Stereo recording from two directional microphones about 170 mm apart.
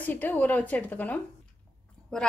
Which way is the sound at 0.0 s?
10° left (ahead or behind).